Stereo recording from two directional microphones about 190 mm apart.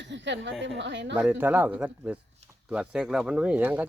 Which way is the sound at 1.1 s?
5° right (ahead or behind).